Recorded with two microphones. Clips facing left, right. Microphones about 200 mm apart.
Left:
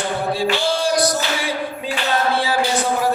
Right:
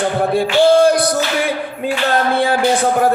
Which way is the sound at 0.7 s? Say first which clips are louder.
Right 9 dB; 55° right (ahead or behind).